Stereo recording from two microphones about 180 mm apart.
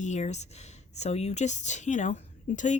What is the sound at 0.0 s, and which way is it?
A woman's voice, 40° left (ahead or behind).